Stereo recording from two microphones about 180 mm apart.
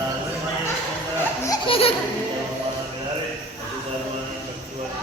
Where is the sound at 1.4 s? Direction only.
25° left (ahead or behind).